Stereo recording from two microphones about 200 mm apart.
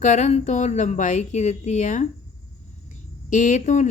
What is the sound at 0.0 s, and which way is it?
A woman's voice, 35° left (ahead or behind).